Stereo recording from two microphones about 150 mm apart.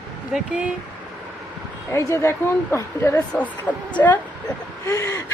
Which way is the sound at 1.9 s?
20° left (ahead or behind).